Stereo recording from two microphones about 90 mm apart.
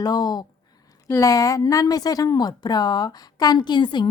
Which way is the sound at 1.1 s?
35° left (ahead or behind).